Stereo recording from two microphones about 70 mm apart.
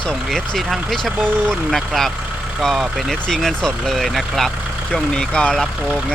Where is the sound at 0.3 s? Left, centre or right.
Centre.